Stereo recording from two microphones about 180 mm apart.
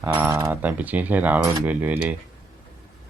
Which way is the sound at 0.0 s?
15° right (ahead or behind).